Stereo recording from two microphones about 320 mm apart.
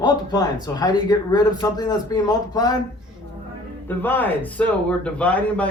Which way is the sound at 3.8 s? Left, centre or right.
Centre.